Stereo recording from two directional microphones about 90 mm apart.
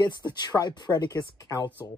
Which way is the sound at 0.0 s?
50° left (ahead or behind).